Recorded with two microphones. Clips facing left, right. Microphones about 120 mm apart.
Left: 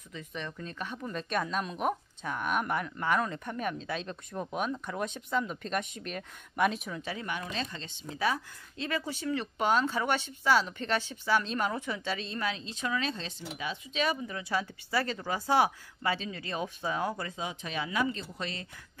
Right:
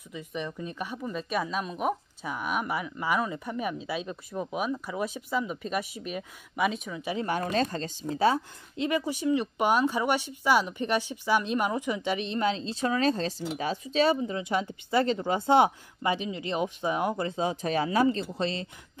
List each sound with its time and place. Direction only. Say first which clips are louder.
0.1 s speech: right 5 dB; 15° right (ahead or behind)
7.2 s speech: right 13 dB; 40° right (ahead or behind)
8.7 s speech: right 6 dB; 15° right (ahead or behind); by 14.1 s 35° right (ahead or behind)
14.2 s speech: right 4 dB; 20° right (ahead or behind)